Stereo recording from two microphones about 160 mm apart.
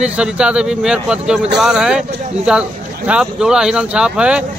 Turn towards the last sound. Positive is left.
turn(degrees=-5)  # may be behind; listen again after turning